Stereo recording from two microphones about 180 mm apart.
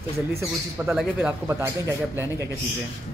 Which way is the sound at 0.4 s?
10° right (ahead or behind).